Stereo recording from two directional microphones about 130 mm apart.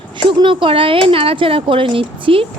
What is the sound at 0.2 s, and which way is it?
A woman's voice, 40° right (ahead or behind).